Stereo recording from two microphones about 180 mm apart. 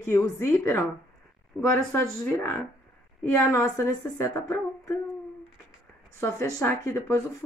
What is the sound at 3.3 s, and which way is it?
Speech, 15° left (ahead or behind).